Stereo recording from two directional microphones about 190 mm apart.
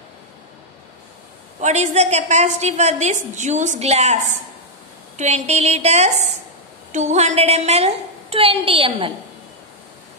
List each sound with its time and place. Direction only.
1.6 s a woman's voice: 35° right (ahead or behind)